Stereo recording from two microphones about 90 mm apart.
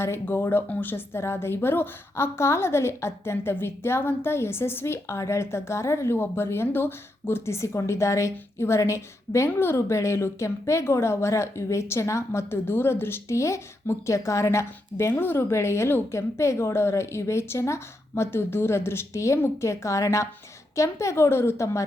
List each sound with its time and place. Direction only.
0.0 s a woman's voice: 25° left (ahead or behind)